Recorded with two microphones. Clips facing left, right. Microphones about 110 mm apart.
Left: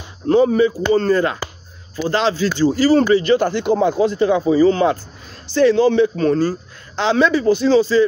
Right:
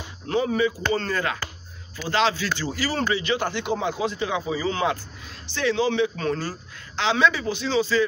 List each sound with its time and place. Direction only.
0.3 s a man's voice: 35° left (ahead or behind)